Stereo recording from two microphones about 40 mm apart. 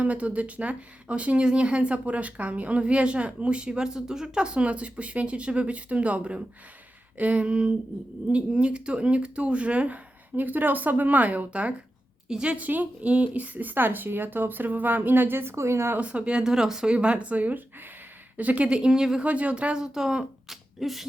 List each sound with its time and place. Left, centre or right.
0.0 s a woman's voice: right
10.3 s speech: right
12.3 s speech: right
12.5 s speech: right
16.0 s a woman's voice: right
16.4 s speech: centre
16.8 s a woman's voice: right
18.7 s speech: right
19.2 s a woman's voice: right
19.7 s speech: centre
20.5 s speech: centre